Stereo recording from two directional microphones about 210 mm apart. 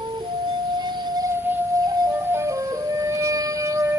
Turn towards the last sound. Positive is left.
turn(degrees=-15)  # may be behind; listen again after turning